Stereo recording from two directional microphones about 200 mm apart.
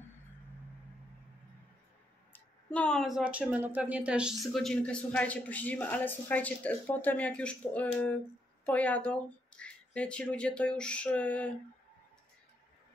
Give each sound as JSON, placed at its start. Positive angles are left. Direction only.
{"t": 2.3, "sound": "speech", "side_deg": 5}